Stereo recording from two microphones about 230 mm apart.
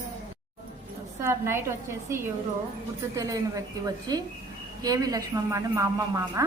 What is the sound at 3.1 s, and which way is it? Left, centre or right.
Speech, centre.